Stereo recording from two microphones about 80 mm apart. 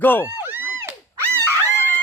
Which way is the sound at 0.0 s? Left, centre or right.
Left.